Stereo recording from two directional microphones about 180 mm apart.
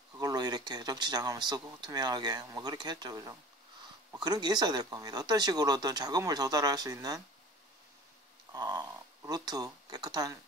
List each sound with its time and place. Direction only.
0.2 s speech: 20° right (ahead or behind)
8.5 s speech: 20° right (ahead or behind)